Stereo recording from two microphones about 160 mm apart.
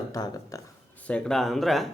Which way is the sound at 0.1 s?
20° left (ahead or behind).